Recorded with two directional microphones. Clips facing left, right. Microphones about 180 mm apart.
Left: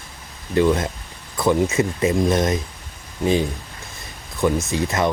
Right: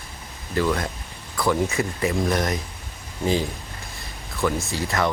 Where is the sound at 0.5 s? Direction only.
20° left (ahead or behind).